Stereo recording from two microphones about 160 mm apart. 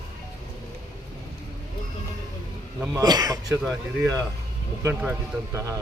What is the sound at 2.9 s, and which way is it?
Speech, 25° right (ahead or behind).